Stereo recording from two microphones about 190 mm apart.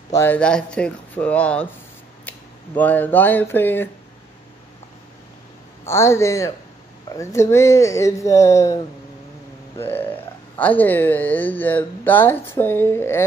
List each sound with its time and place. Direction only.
0.1 s speech: 10° left (ahead or behind)
5.9 s speech: 15° left (ahead or behind)
9.8 s speech: 10° left (ahead or behind)